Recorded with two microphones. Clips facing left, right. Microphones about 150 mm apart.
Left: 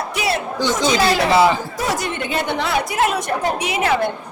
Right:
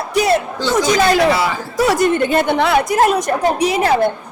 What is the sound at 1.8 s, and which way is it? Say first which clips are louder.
Speech: right 11 dB; 65° right (ahead or behind).